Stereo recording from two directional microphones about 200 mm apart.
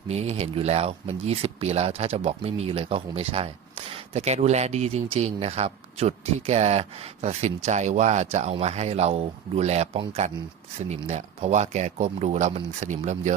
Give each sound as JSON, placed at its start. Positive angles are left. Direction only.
{"t": 0.1, "sound": "speech", "side_deg": -30}